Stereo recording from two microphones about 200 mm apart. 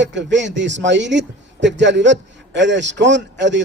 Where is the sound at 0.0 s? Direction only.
65° right (ahead or behind).